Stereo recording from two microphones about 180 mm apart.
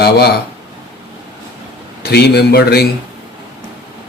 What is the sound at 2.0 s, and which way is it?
Speech, 65° left (ahead or behind).